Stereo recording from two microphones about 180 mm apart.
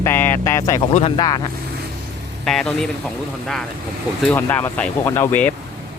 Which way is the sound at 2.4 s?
5° left (ahead or behind).